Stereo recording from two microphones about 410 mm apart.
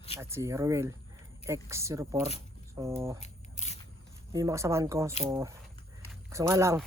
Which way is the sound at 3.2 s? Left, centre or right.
Centre.